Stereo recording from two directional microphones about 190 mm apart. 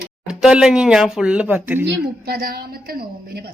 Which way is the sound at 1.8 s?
55° right (ahead or behind).